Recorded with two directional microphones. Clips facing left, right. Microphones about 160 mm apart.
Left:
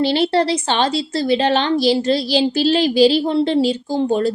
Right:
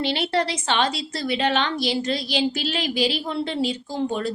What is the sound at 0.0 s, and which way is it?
A woman's voice, 30° left (ahead or behind).